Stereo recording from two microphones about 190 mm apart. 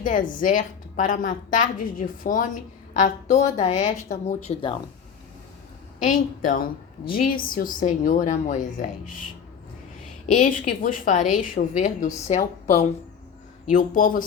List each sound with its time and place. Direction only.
0.0 s a woman's voice: 45° left (ahead or behind); by 4.8 s 30° left (ahead or behind)
6.0 s a woman's voice: 45° left (ahead or behind)
10.2 s a woman's voice: 40° left (ahead or behind)
13.7 s a woman's voice: 45° left (ahead or behind)